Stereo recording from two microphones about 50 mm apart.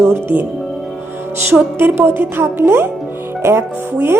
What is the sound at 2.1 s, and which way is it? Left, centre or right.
Speech, right.